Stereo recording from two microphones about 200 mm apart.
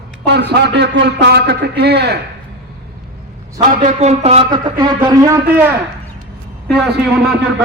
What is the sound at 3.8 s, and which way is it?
Speech, 35° right (ahead or behind).